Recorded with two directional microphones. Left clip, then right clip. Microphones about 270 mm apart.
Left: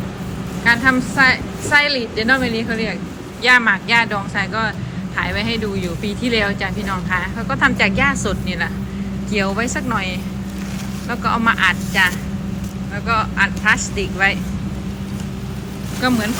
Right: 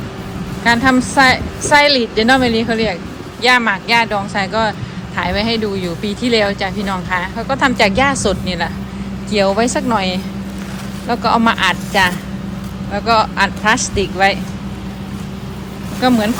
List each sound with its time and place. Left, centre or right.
0.6 s a woman's voice: centre
16.0 s a woman's voice: centre